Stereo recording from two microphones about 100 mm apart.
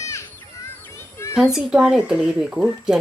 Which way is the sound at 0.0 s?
30° left (ahead or behind).